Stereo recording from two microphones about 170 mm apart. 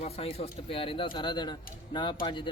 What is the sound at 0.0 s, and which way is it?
Speech, 35° left (ahead or behind).